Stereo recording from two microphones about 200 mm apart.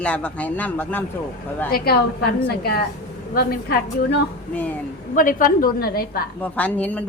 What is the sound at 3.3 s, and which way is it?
Speech, 50° left (ahead or behind).